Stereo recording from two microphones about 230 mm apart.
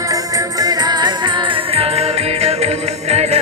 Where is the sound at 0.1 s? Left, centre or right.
Centre.